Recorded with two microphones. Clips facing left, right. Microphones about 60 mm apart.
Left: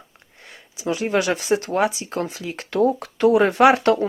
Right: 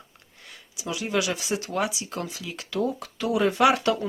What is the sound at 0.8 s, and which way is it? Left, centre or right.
Speech, left.